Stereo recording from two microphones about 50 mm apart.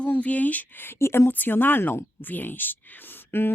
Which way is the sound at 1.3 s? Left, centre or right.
Left.